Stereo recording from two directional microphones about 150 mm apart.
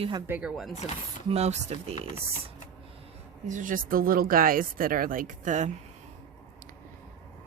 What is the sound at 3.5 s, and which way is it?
Speech, 60° right (ahead or behind).